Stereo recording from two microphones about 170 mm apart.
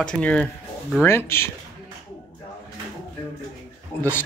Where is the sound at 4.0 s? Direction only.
15° left (ahead or behind).